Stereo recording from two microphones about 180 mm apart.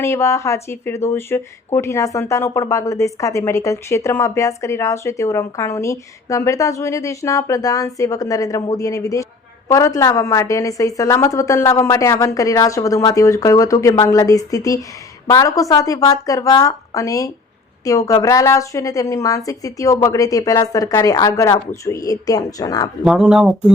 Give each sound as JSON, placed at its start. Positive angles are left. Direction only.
{"t": 0.0, "sound": "a woman's voice", "side_deg": 15}
{"t": 23.0, "sound": "speech", "side_deg": -5}